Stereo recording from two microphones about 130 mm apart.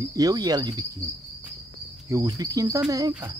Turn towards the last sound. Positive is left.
turn(degrees=-30)  # may be behind; listen again after turning